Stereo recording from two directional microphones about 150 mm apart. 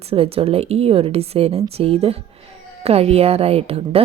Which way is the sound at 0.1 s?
40° right (ahead or behind).